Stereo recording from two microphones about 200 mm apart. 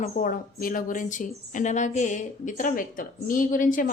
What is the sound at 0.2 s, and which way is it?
A woman's voice, 45° left (ahead or behind).